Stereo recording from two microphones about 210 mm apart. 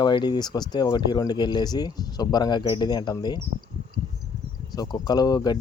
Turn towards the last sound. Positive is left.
turn(degrees=20)  # may be behind; listen again after turning